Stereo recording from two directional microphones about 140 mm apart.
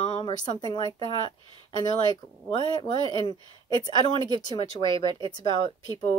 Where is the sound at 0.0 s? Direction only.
35° left (ahead or behind).